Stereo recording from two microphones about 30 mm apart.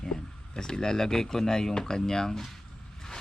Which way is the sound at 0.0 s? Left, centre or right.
Left.